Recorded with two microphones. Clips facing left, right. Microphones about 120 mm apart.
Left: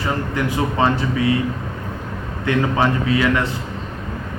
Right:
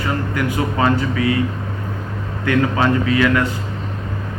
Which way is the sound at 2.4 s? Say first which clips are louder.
Right 1 dB; 25° left (ahead or behind).